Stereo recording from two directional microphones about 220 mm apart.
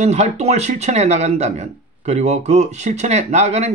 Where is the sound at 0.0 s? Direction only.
30° right (ahead or behind).